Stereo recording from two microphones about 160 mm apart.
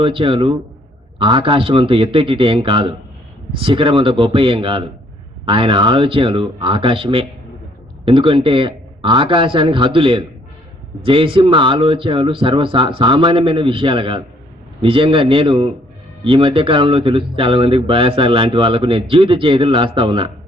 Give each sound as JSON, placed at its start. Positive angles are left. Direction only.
{"t": 0.0, "sound": "speech", "side_deg": -35}